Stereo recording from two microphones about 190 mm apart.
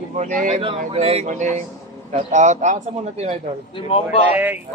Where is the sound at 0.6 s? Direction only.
30° right (ahead or behind).